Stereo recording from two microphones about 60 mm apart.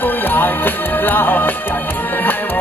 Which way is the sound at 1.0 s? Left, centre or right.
Left.